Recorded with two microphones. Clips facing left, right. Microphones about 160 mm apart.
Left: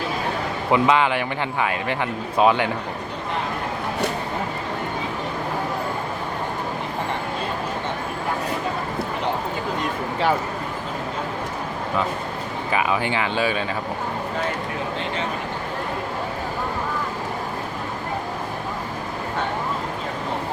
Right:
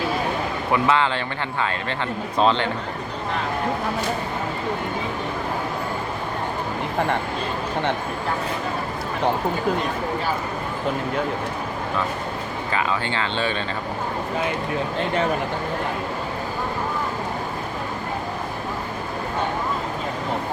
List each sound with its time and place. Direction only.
0.7 s speech: 15° left (ahead or behind)
2.4 s speech: 10° left (ahead or behind)
12.7 s speech: 15° left (ahead or behind)